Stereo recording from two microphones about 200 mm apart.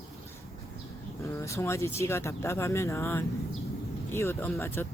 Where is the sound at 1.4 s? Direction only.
15° left (ahead or behind).